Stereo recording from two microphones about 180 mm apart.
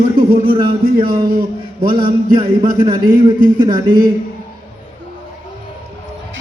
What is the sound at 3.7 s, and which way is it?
Speech, 55° right (ahead or behind).